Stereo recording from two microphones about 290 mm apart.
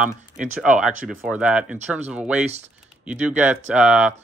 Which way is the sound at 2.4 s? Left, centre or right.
Right.